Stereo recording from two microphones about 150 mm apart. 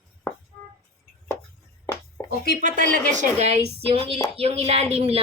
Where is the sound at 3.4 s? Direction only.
45° right (ahead or behind).